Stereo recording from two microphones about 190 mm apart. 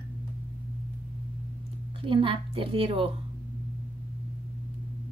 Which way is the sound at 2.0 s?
30° right (ahead or behind).